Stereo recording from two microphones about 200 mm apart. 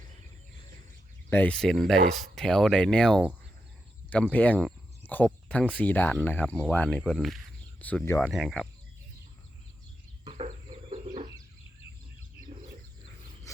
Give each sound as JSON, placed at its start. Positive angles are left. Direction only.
{"t": 1.3, "sound": "speech", "side_deg": 10}
{"t": 8.2, "sound": "speech", "side_deg": 0}
{"t": 10.2, "sound": "chicken", "side_deg": -30}